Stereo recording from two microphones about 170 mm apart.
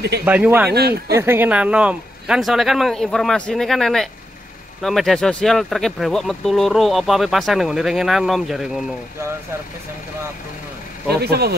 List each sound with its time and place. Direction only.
0.2 s speech: 10° right (ahead or behind)
0.7 s speech: 70° right (ahead or behind)
1.1 s speech: 15° right (ahead or behind)
11.1 s speech: 70° right (ahead or behind)